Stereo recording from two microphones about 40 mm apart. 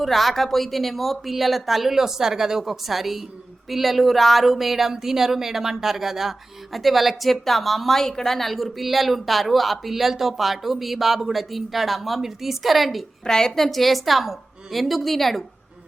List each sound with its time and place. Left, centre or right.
0.0 s speech: centre
13.2 s a woman's voice: centre
13.6 s speech: centre